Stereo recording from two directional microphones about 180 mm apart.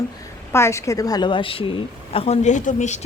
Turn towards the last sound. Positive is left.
turn(degrees=40)  # may be behind; listen again after turning